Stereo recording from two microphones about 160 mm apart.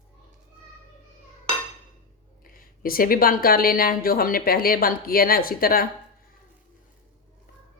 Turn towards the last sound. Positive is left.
turn(degrees=65)  # may be behind; listen again after turning